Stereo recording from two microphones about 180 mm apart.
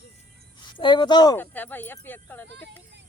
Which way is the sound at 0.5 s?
25° left (ahead or behind).